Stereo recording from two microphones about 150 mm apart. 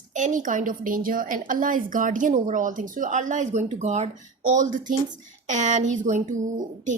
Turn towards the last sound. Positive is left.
turn(degrees=-55)  # may be behind; listen again after turning